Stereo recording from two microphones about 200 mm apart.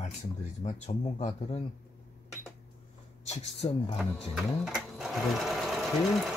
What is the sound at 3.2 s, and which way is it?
Speech, 35° left (ahead or behind).